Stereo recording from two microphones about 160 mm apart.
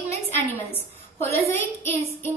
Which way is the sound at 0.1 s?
15° left (ahead or behind).